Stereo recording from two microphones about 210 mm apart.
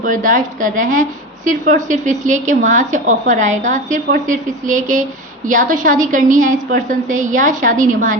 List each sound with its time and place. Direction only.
0.0 s a woman's voice: 40° right (ahead or behind)